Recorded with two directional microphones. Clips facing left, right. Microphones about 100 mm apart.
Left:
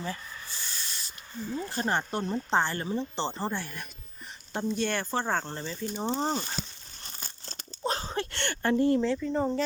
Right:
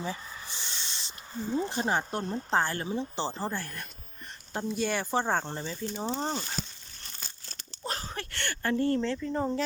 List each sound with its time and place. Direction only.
0.0 s a sound: 15° right (ahead or behind)
1.8 s speech: 5° right (ahead or behind)
6.2 s speech: 10° left (ahead or behind)
7.9 s speech: 20° left (ahead or behind)
9.0 s speech: 5° left (ahead or behind)